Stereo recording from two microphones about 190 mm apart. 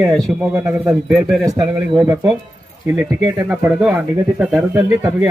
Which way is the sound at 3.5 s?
5° right (ahead or behind).